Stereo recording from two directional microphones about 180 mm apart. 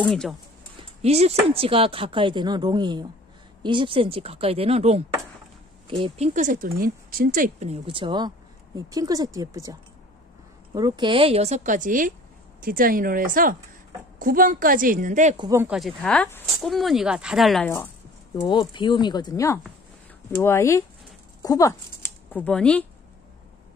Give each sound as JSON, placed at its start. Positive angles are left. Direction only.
{"t": 0.0, "sound": "speech", "side_deg": 5}
{"t": 1.0, "sound": "a woman's voice", "side_deg": -35}
{"t": 15.3, "sound": "speech", "side_deg": -25}
{"t": 15.6, "sound": "speech", "side_deg": 0}
{"t": 17.6, "sound": "speech", "side_deg": 15}
{"t": 18.5, "sound": "speech", "side_deg": 25}